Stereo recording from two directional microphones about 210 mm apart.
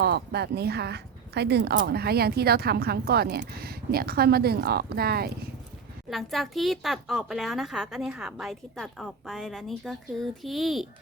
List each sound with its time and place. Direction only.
0.0 s speech: 50° right (ahead or behind)
6.1 s a woman's voice: centre (ahead or behind)